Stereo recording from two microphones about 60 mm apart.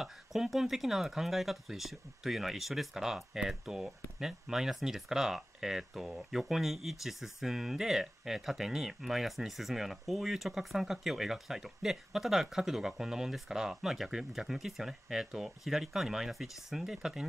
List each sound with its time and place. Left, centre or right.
0.0 s speech: centre